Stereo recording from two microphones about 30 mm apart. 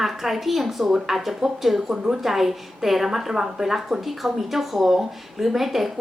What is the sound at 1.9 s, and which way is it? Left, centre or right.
Speech, right.